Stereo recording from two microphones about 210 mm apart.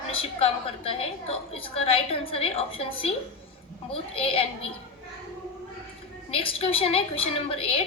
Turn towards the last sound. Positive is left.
turn(degrees=25)  # may be behind; listen again after turning